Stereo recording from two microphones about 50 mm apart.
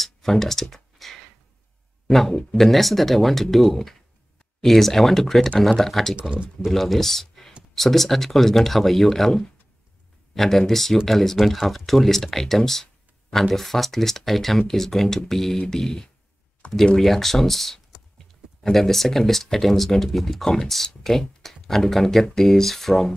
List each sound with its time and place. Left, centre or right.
0.0 s a sound: centre
2.0 s speech: centre
6.1 s speech: right
6.6 s speech: centre